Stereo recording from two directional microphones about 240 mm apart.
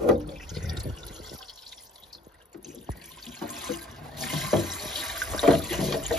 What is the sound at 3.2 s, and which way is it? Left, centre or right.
Water, centre.